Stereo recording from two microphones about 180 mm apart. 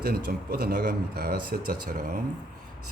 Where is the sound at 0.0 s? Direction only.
60° right (ahead or behind).